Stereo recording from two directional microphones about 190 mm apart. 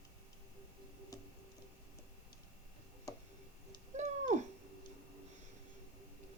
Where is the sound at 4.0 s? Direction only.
40° right (ahead or behind).